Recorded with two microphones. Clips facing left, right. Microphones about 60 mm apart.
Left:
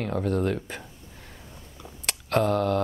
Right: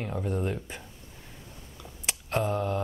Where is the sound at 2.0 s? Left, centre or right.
Left.